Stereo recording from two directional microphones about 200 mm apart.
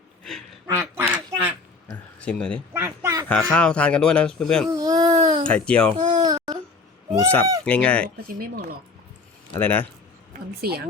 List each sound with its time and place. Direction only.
0.7 s quack: 10° right (ahead or behind)
1.9 s a sound: 5° left (ahead or behind)
2.7 s a sound: 15° right (ahead or behind)
3.5 s speech: 5° left (ahead or behind)
4.7 s baby cry: 20° right (ahead or behind)
5.4 s speech: 5° left (ahead or behind)
6.0 s a sound: 20° right (ahead or behind)
7.1 s speech: 10° left (ahead or behind)
8.3 s speech: 45° right (ahead or behind)
9.6 s speech: 10° left (ahead or behind)
10.6 s speech: 50° right (ahead or behind)